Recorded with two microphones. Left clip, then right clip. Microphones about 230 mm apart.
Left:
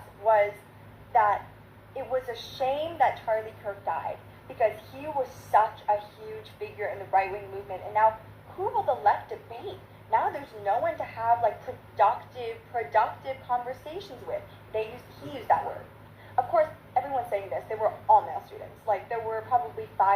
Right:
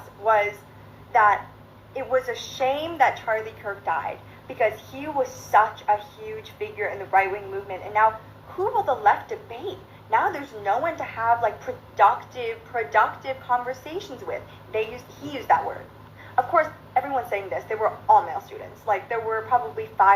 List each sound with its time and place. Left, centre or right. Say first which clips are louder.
1.1 s a woman's voice: right 5 dB; right
16.3 s a woman's voice: right 3 dB; right